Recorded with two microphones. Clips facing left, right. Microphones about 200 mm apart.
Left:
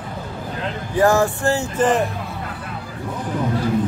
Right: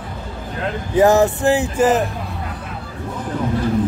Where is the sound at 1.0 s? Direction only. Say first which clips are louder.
Right 3 dB; 20° right (ahead or behind).